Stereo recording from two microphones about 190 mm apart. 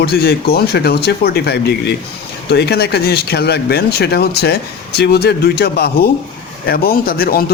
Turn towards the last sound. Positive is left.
turn(degrees=50)  # may be behind; listen again after turning